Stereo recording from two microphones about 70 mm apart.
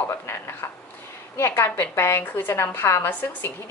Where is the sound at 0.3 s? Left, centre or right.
Left.